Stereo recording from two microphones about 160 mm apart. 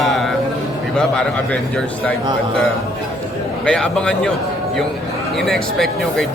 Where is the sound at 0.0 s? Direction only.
Centre (ahead or behind).